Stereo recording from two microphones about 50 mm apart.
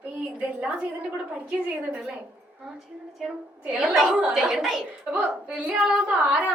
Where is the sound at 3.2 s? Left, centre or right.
Centre.